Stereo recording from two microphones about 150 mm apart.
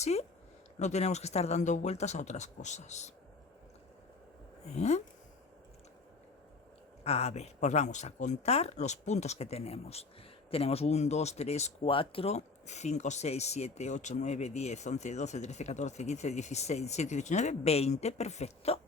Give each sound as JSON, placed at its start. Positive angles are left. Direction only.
{"t": 0.0, "sound": "speech", "side_deg": 45}
{"t": 4.7, "sound": "speech", "side_deg": 45}
{"t": 7.0, "sound": "speech", "side_deg": 45}